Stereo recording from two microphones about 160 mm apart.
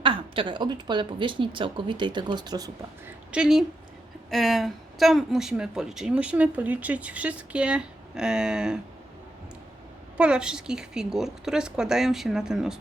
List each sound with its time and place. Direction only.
0.0 s a woman's voice: 30° right (ahead or behind)
3.3 s speech: 5° right (ahead or behind)
10.2 s speech: 5° right (ahead or behind)